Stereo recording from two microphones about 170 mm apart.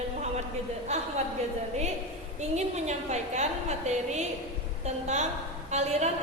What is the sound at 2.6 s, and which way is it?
A woman's voice, 40° right (ahead or behind).